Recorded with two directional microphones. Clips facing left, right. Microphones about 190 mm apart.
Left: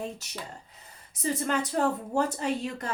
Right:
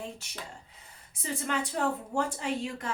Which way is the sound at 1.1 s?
40° left (ahead or behind).